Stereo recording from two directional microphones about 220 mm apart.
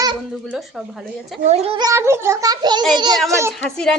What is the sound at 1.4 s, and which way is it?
A child's voice, 30° right (ahead or behind).